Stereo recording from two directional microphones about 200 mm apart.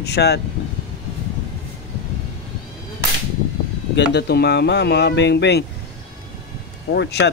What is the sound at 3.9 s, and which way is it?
Speech, 55° left (ahead or behind).